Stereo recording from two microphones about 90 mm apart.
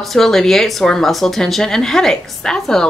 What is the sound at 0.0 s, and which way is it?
Speech, 5° left (ahead or behind).